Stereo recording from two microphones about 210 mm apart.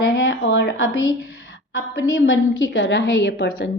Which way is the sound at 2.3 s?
65° left (ahead or behind).